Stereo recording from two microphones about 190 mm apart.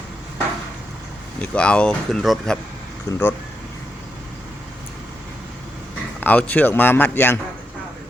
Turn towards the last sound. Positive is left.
turn(degrees=10)  # may be behind; listen again after turning